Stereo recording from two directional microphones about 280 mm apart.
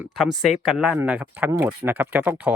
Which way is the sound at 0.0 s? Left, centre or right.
Centre.